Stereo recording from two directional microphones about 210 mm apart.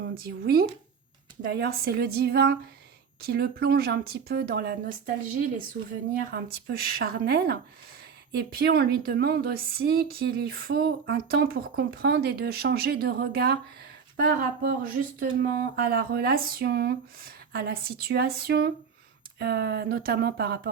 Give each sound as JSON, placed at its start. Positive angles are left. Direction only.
{"t": 0.0, "sound": "speech", "side_deg": -50}